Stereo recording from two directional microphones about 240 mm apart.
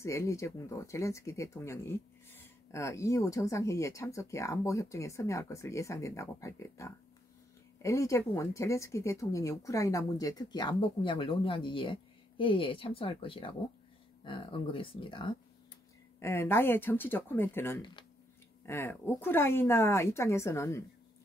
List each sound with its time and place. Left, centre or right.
0.0 s speech: centre
16.2 s speech: centre